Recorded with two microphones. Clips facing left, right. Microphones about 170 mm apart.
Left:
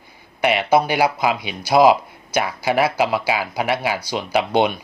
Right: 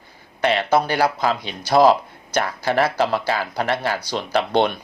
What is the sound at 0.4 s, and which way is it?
Speech, 10° left (ahead or behind).